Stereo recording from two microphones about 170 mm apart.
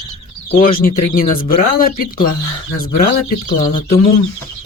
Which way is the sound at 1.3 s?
60° left (ahead or behind).